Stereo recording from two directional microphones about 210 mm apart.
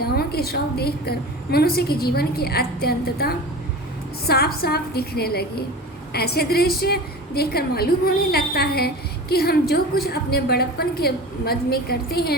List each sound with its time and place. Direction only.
0.0 s a woman's voice: 50° left (ahead or behind)